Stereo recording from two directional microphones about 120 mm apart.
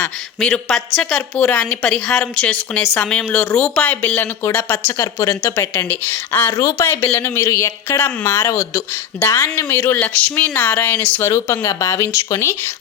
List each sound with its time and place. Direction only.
0.3 s a woman's voice: 5° left (ahead or behind); by 12.7 s 25° left (ahead or behind)